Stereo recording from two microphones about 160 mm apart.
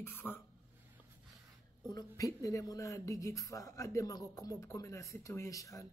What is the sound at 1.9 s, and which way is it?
Speech, 20° left (ahead or behind).